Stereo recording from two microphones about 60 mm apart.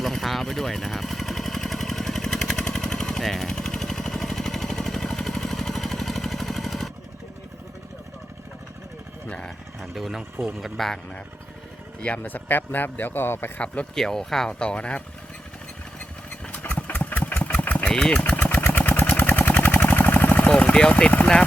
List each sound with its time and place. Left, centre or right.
0.0 s vehicle: centre
9.8 s a sound: centre
10.6 s speech: centre
12.0 s speech: left
13.9 s speech: centre
14.6 s speech: centre
16.0 s engine: left
17.8 s speech: centre
18.2 s engine: left
18.6 s vehicle: left
19.9 s a sound: left
20.6 s a sound: centre